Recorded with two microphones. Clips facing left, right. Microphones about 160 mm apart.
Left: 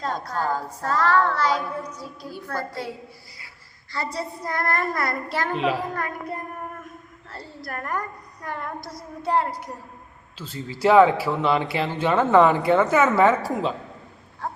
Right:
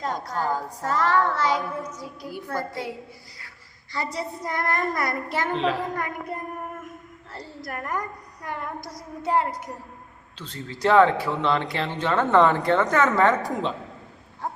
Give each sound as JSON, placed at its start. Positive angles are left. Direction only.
{"t": 0.0, "sound": "child singing", "side_deg": -15}
{"t": 3.9, "sound": "child singing", "side_deg": -20}
{"t": 5.5, "sound": "speech", "side_deg": 10}
{"t": 7.3, "sound": "child singing", "side_deg": -15}
{"t": 10.3, "sound": "speech", "side_deg": 5}